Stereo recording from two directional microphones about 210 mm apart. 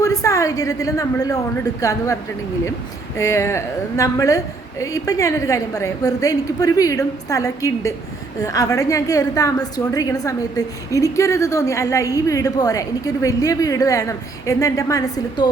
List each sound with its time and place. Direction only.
0.0 s a woman's voice: 15° left (ahead or behind)
3.2 s a woman's voice: 15° left (ahead or behind)